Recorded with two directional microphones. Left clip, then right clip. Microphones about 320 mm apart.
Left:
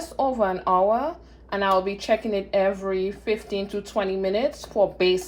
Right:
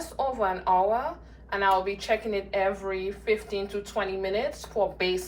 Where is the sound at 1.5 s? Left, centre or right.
Centre.